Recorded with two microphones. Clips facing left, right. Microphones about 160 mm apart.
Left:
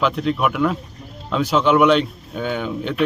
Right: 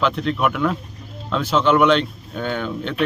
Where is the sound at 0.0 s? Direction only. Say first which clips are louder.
Left 1 dB; 5° left (ahead or behind).